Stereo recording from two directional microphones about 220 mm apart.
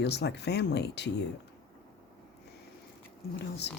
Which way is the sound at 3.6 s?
50° left (ahead or behind).